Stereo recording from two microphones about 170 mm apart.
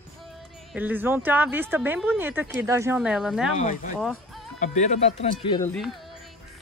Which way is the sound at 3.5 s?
50° left (ahead or behind).